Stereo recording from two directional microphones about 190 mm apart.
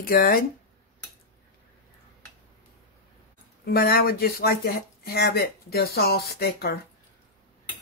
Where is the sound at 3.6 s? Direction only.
55° left (ahead or behind).